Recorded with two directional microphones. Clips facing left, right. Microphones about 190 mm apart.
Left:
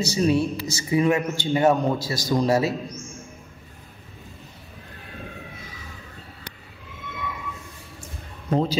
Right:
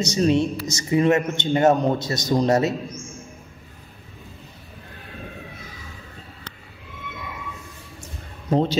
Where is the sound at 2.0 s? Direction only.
Centre (ahead or behind).